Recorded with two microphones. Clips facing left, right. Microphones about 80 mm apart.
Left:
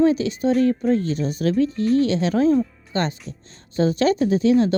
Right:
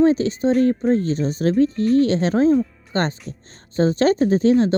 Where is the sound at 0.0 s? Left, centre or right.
Right.